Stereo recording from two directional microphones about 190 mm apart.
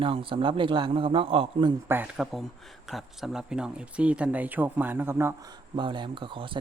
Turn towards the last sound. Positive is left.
turn(degrees=-25)  # may be behind; listen again after turning